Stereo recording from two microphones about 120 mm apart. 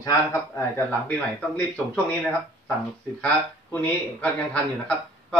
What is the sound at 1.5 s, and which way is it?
Speech, 10° left (ahead or behind).